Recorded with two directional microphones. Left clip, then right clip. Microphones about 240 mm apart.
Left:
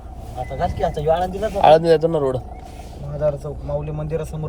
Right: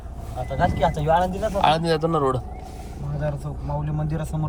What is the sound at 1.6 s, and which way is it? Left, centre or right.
Speech, centre.